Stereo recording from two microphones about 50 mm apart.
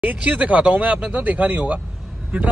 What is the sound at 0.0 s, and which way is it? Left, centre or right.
Speech, right.